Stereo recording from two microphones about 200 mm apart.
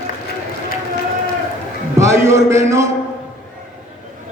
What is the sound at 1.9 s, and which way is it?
Speech, 15° right (ahead or behind).